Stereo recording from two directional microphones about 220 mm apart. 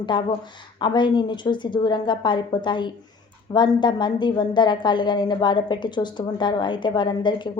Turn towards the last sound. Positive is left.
turn(degrees=20)  # may be behind; listen again after turning